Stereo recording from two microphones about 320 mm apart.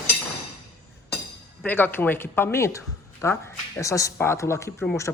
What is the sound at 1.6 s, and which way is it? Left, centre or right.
Speech, centre.